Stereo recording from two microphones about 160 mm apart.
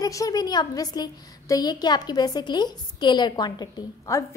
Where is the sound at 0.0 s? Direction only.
20° left (ahead or behind).